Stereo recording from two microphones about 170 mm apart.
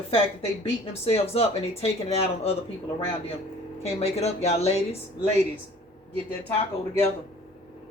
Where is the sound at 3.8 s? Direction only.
40° left (ahead or behind).